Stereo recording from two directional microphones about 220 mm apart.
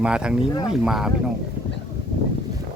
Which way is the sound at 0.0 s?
5° right (ahead or behind).